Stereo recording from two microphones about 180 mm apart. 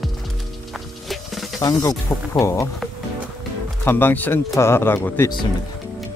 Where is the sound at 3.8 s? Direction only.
10° left (ahead or behind).